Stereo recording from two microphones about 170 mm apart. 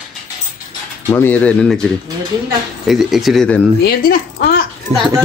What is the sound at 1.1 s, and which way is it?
Speech, 10° left (ahead or behind).